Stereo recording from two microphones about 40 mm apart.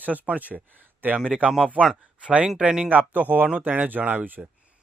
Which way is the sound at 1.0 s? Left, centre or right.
Right.